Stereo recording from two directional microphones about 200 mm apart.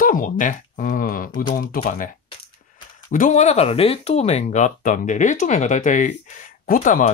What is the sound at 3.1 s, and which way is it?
Speech, 40° left (ahead or behind).